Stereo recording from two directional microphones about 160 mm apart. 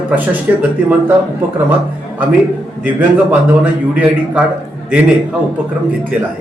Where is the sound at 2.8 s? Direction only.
10° right (ahead or behind).